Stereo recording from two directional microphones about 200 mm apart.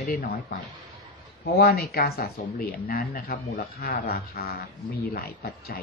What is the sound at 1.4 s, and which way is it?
Speech, 50° left (ahead or behind).